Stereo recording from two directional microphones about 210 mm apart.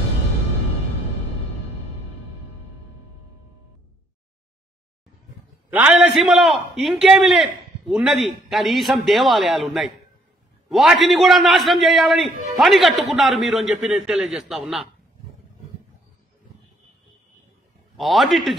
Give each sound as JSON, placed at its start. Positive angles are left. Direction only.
{"t": 5.7, "sound": "a man's voice", "side_deg": -5}
{"t": 17.9, "sound": "a man's voice", "side_deg": 0}